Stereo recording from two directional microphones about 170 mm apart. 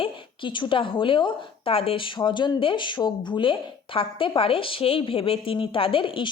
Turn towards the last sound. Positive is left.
turn(degrees=30)  # may be behind; listen again after turning